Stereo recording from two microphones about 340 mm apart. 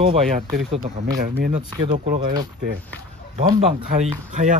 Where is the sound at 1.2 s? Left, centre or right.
Right.